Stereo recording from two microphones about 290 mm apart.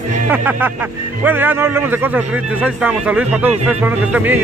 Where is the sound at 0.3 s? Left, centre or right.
Centre.